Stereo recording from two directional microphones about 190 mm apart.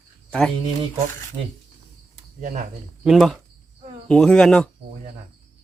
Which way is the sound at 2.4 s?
45° right (ahead or behind).